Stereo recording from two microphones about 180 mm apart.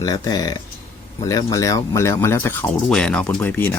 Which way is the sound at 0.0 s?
20° left (ahead or behind).